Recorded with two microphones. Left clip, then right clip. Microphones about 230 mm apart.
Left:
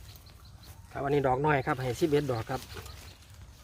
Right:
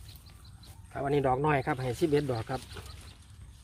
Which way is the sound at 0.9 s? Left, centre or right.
Centre.